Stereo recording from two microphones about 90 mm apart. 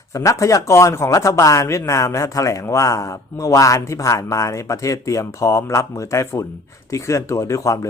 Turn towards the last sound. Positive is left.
turn(degrees=35)  # may be behind; listen again after turning